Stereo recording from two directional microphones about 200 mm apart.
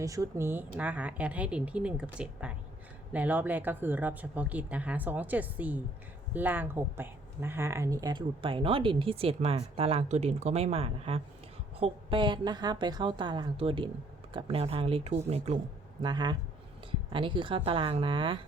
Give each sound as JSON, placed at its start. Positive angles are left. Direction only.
{"t": 0.0, "sound": "speech", "side_deg": -15}
{"t": 16.0, "sound": "speech", "side_deg": -20}